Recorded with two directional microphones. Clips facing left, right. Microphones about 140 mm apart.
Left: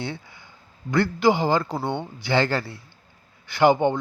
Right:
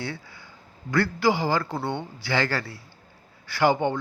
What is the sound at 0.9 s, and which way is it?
Speech, 20° left (ahead or behind).